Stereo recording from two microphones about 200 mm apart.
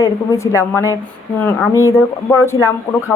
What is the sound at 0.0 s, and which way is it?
A woman's voice, 15° left (ahead or behind).